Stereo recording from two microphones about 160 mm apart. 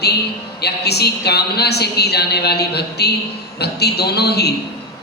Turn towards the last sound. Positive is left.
turn(degrees=90)